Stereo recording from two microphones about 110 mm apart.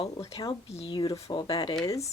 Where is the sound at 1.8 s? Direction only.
30° left (ahead or behind).